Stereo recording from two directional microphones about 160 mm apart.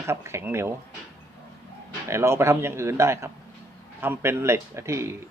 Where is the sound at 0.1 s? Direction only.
15° right (ahead or behind).